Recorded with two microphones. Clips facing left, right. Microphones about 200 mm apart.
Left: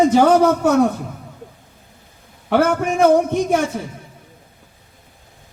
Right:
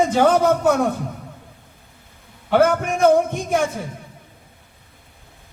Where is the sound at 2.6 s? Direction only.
60° left (ahead or behind).